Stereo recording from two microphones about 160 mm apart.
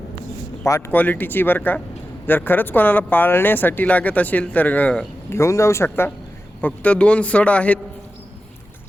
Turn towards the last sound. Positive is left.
turn(degrees=10)  # may be behind; listen again after turning